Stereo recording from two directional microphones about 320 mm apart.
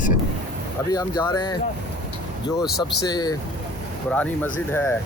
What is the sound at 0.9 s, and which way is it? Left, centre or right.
Speech, centre.